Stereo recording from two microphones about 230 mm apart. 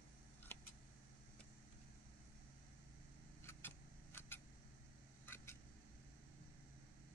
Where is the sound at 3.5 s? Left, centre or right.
Centre.